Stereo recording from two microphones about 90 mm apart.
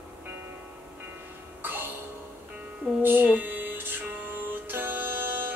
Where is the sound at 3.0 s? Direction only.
20° right (ahead or behind).